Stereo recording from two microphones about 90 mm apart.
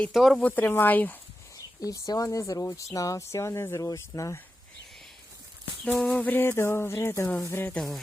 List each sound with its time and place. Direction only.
0.1 s speech: centre (ahead or behind)
0.3 s speech: 15° left (ahead or behind)
1.8 s speech: 40° left (ahead or behind)
5.8 s speech: 10° left (ahead or behind); by 7.7 s 25° left (ahead or behind)